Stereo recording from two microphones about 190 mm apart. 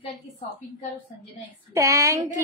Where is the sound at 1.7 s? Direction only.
15° right (ahead or behind).